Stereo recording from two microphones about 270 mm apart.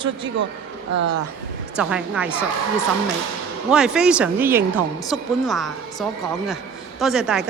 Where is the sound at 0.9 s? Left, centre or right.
Right.